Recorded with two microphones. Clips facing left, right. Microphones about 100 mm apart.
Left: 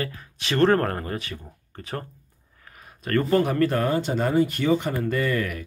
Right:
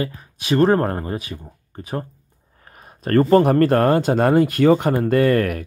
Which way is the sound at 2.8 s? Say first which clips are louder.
Right 7 dB; 35° right (ahead or behind).